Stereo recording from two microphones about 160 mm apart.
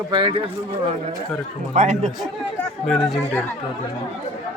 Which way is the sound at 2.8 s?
5° left (ahead or behind).